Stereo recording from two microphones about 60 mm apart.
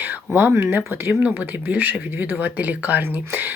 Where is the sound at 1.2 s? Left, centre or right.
Right.